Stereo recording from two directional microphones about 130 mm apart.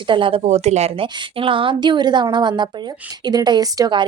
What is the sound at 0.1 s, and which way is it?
Speech, 40° right (ahead or behind).